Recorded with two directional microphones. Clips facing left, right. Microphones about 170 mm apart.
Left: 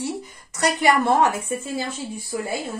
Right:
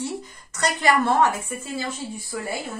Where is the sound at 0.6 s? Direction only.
15° left (ahead or behind).